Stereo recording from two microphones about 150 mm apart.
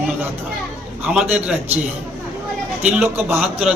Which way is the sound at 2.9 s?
10° right (ahead or behind).